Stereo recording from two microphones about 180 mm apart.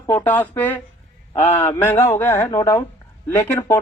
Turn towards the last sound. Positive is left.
turn(degrees=10)  # may be behind; listen again after turning